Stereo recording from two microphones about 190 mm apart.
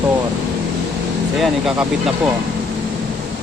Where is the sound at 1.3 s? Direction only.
Centre (ahead or behind).